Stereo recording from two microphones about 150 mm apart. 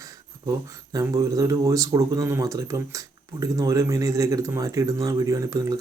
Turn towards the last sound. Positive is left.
turn(degrees=-25)  # may be behind; listen again after turning